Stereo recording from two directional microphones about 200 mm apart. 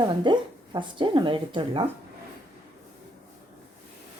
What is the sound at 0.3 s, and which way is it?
Speech, 25° right (ahead or behind).